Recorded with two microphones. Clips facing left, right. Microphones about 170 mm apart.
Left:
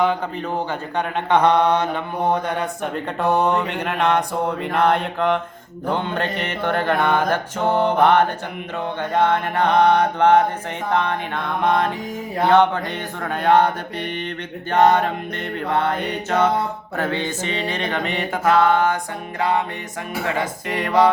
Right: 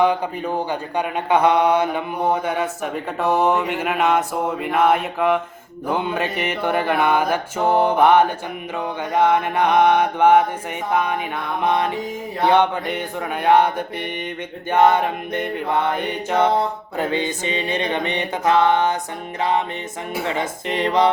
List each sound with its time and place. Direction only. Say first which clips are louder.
0.0 s speech: right 2 dB; 15° right (ahead or behind)
5.9 s mantra: right 1 dB; 10° right (ahead or behind)
12.5 s mantra: left 1 dB; 15° right (ahead or behind)
17.0 s music: right 2 dB; 15° right (ahead or behind)